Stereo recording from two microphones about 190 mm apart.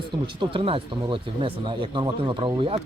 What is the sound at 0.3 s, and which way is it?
Speech, 25° right (ahead or behind).